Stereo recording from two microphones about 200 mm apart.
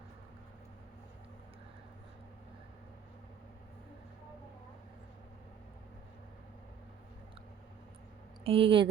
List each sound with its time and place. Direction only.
8.4 s speech: 25° right (ahead or behind)